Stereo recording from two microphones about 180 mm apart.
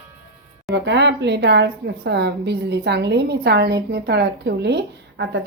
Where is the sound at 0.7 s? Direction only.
75° right (ahead or behind).